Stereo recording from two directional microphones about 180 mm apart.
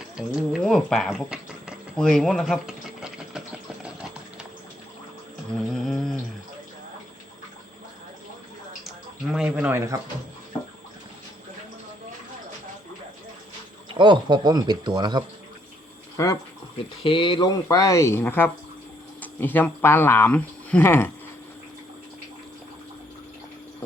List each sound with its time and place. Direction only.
0.2 s speech: 5° right (ahead or behind)
5.6 s humming: centre (ahead or behind)
8.8 s speech: 5° right (ahead or behind)
13.9 s speech: 25° right (ahead or behind)
16.1 s speech: 20° left (ahead or behind)